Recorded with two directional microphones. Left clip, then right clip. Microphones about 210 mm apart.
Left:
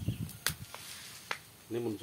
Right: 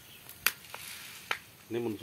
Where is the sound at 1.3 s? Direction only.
30° right (ahead or behind).